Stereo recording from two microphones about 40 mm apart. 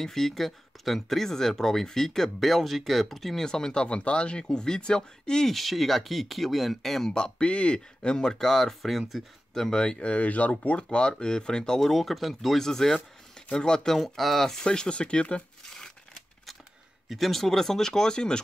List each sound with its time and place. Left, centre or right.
0.0 s speech: centre
3.4 s speech: centre
5.5 s speech: centre
7.1 s speech: left; by 9.2 s centre
9.5 s speech: centre
11.8 s speech: centre
13.5 s speech: centre
14.0 s speech: centre
14.6 s speech: left
15.6 s crumpling: centre
17.1 s speech: centre